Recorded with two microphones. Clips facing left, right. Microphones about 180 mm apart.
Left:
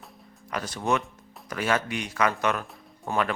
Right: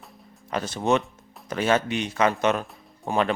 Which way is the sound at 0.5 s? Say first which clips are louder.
Right 4 dB; 25° right (ahead or behind).